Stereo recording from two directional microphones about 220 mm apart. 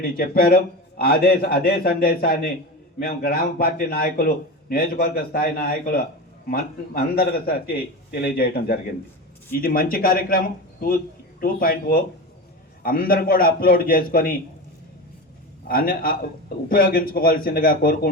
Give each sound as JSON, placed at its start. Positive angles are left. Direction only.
{"t": 0.2, "sound": "a man's voice", "side_deg": 40}
{"t": 15.6, "sound": "a man's voice", "side_deg": 40}